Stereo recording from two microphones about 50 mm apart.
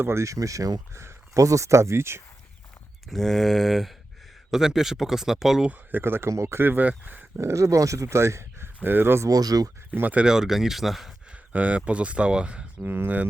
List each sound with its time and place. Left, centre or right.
0.0 s speech: right
3.1 s a sound: centre
4.5 s speech: centre
5.7 s speech: right
6.2 s speech: right
6.6 s speech: right
7.3 s speech: right
9.9 s speech: right
10.2 s speech: centre
11.3 s speech: right
12.8 s speech: right